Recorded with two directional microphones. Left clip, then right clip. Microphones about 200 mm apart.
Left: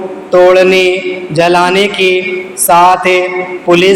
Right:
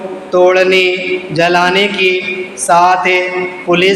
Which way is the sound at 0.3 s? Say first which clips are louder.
Left 3 dB; 25° left (ahead or behind).